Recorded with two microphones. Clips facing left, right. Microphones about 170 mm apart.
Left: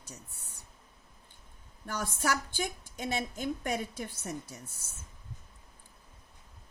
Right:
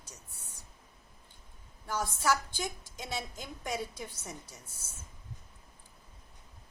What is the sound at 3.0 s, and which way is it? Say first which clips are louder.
A woman's voice: left 6 dB; 60° left (ahead or behind).